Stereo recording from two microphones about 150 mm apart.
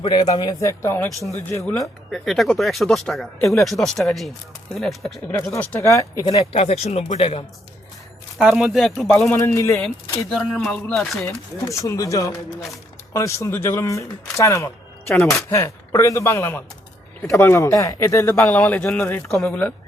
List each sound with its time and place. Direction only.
0.0 s speech: 30° left (ahead or behind)
2.0 s speech: centre (ahead or behind)
5.3 s speech: 15° left (ahead or behind)
5.9 s speech: 20° left (ahead or behind)
6.3 s speech: 40° left (ahead or behind)
8.4 s speech: centre (ahead or behind)
9.3 s speech: 20° left (ahead or behind)
10.2 s speech: centre (ahead or behind)
11.3 s speech: 20° left (ahead or behind)